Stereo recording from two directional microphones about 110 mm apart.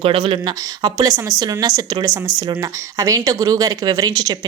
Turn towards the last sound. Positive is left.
turn(degrees=-35)  # may be behind; listen again after turning